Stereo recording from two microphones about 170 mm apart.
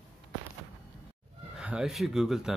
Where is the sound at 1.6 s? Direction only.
5° right (ahead or behind).